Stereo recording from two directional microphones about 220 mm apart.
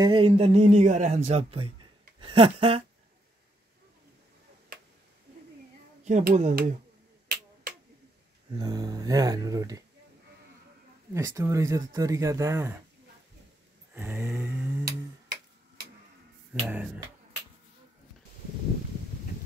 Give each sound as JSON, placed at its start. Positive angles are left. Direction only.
{"t": 0.0, "sound": "speech", "side_deg": -25}
{"t": 4.7, "sound": "a sound", "side_deg": -40}
{"t": 6.0, "sound": "speech", "side_deg": -30}
{"t": 8.5, "sound": "speech", "side_deg": -20}
{"t": 11.1, "sound": "speech", "side_deg": -15}
{"t": 13.9, "sound": "speech", "side_deg": -10}
{"t": 16.6, "sound": "speech", "side_deg": -5}